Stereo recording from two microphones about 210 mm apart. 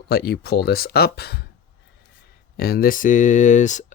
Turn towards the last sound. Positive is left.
turn(degrees=35)  # may be behind; listen again after turning